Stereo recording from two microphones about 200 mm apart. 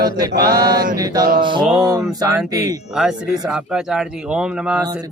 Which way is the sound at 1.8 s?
20° right (ahead or behind).